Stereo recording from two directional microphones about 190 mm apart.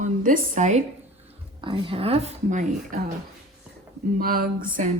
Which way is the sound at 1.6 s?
25° right (ahead or behind).